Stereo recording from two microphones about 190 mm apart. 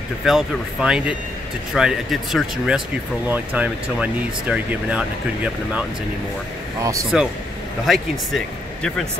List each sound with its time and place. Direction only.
0.2 s speech: centre (ahead or behind)
6.8 s speech: 15° right (ahead or behind)
7.8 s speech: centre (ahead or behind)